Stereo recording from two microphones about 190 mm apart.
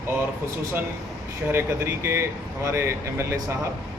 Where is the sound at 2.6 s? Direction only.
15° right (ahead or behind).